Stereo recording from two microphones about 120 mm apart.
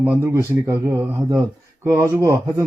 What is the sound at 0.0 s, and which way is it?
Speech, 20° right (ahead or behind).